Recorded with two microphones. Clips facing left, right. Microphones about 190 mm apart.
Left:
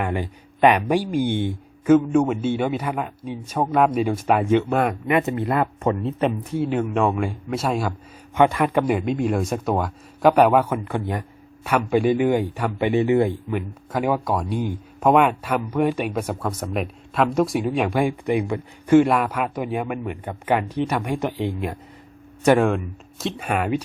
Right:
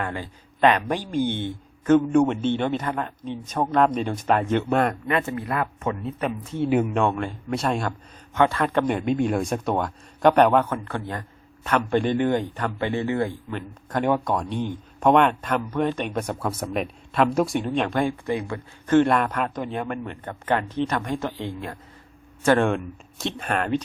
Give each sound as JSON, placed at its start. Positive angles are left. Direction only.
{"t": 0.0, "sound": "a man's voice", "side_deg": 15}
{"t": 6.7, "sound": "a man's voice", "side_deg": -10}
{"t": 8.4, "sound": "a man's voice", "side_deg": 15}
{"t": 22.6, "sound": "a man's voice", "side_deg": 0}